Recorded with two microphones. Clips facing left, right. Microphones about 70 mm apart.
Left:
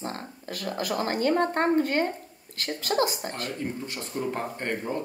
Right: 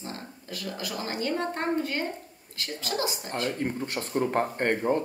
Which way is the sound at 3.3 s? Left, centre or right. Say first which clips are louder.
Right 3 dB; right.